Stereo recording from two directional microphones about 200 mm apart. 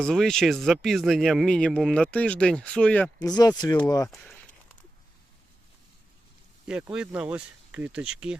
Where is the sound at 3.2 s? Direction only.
20° left (ahead or behind).